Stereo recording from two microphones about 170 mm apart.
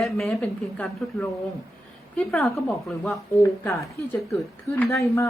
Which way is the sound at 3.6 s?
15° left (ahead or behind).